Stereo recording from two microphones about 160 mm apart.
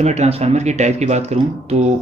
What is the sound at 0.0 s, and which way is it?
Speech, 45° right (ahead or behind).